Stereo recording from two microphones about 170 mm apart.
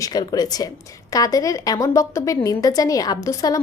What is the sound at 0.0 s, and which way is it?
A woman's voice, 25° left (ahead or behind).